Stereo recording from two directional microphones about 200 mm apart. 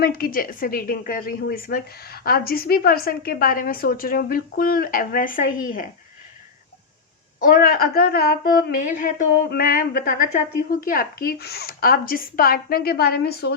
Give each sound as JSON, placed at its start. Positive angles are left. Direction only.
{"t": 0.0, "sound": "a woman's voice", "side_deg": 50}
{"t": 7.3, "sound": "a woman's voice", "side_deg": 45}